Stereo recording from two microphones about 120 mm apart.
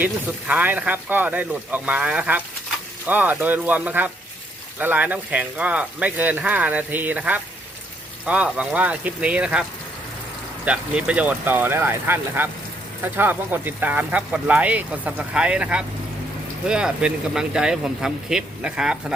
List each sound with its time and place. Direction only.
0.0 s speech: 15° right (ahead or behind)
10.7 s speech: 10° right (ahead or behind)